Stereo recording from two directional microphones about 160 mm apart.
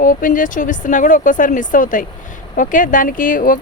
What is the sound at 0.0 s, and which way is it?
Speech, 60° left (ahead or behind).